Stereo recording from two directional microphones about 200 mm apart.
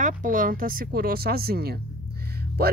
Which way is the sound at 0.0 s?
40° right (ahead or behind).